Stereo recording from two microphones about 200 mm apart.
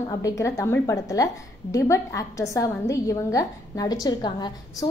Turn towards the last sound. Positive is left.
turn(degrees=20)  # may be behind; listen again after turning